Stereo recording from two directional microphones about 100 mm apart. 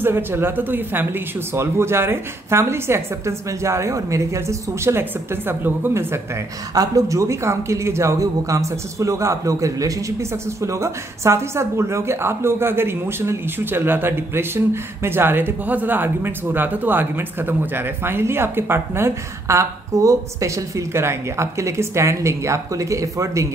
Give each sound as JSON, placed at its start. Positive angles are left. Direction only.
{"t": 0.0, "sound": "speech", "side_deg": -20}
{"t": 6.7, "sound": "speech", "side_deg": -35}